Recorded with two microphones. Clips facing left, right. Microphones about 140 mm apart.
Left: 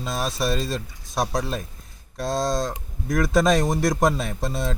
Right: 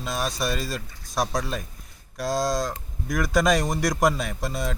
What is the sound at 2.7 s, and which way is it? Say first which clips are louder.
Speech: left 3 dB; 25° left (ahead or behind).